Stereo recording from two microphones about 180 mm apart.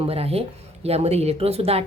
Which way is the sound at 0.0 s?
35° right (ahead or behind).